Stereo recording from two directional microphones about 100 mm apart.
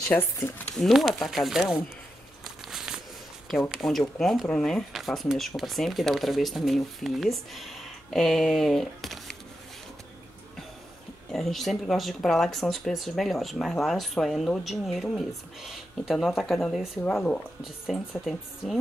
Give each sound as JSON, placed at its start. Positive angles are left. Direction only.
{"t": 0.1, "sound": "speech", "side_deg": 20}
{"t": 0.7, "sound": "speech", "side_deg": 0}
{"t": 2.4, "sound": "a sound", "side_deg": -5}
{"t": 3.4, "sound": "speech", "side_deg": -5}
{"t": 11.3, "sound": "speech", "side_deg": 0}